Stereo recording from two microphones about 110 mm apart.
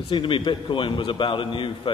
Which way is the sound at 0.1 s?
50° left (ahead or behind).